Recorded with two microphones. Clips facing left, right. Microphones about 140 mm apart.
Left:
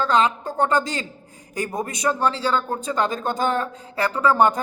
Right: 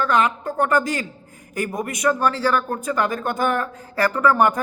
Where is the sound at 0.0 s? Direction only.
30° left (ahead or behind).